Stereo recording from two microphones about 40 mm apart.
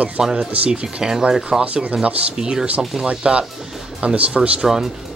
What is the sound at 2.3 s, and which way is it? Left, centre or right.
Speech, centre.